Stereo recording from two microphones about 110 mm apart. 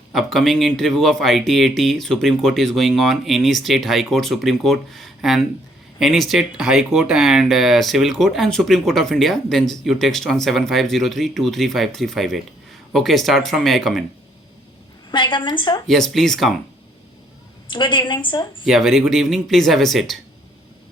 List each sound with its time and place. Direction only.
0.1 s speech: centre (ahead or behind)
15.1 s a woman's voice: 45° left (ahead or behind)
15.9 s speech: 5° left (ahead or behind)
17.7 s a woman's voice: 45° left (ahead or behind)
18.6 s speech: centre (ahead or behind)